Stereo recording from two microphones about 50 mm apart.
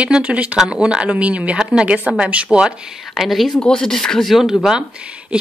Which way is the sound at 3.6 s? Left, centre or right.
Centre.